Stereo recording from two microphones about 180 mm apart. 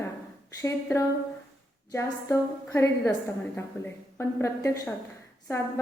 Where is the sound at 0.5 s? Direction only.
15° left (ahead or behind).